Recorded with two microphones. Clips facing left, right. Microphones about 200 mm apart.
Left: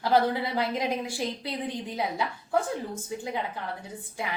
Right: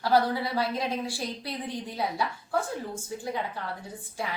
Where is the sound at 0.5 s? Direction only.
20° left (ahead or behind).